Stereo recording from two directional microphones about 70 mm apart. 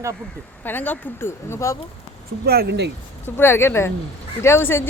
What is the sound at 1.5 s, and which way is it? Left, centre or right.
Speech, left.